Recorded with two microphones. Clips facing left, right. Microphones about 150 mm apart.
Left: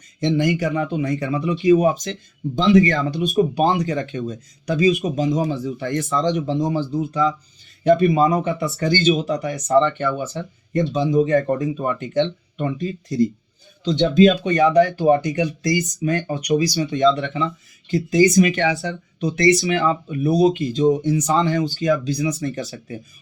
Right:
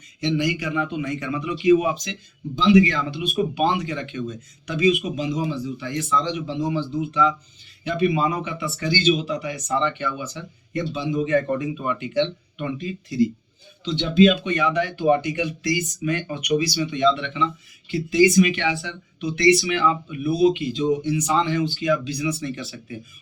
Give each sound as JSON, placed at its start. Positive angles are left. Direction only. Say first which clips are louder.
{"t": 0.2, "sound": "speech", "louder": "left 4 dB", "side_deg": 45}